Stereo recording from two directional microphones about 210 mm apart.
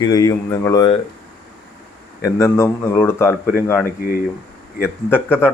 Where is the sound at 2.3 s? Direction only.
15° left (ahead or behind).